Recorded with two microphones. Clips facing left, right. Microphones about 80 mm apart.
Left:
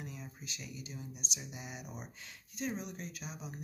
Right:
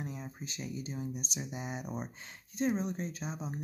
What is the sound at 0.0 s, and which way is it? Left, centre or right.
Speech, right.